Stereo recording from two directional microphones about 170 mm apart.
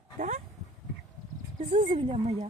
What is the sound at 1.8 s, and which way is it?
Speech, 35° right (ahead or behind).